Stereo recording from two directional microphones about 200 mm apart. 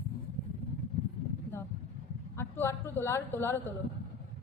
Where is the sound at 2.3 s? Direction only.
10° left (ahead or behind).